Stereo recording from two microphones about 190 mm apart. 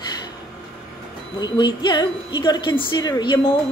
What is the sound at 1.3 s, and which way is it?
A woman's voice, 25° left (ahead or behind).